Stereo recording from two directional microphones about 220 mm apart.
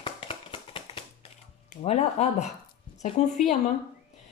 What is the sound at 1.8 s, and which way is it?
Speech, 30° left (ahead or behind).